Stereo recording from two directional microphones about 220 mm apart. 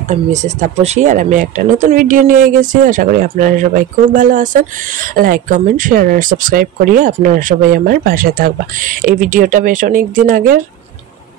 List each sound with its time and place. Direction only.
0.1 s speech: 30° right (ahead or behind)